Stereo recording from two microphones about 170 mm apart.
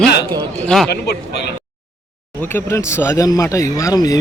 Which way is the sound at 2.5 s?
15° left (ahead or behind).